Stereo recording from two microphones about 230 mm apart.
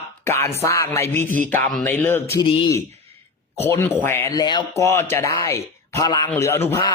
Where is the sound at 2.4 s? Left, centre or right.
Left.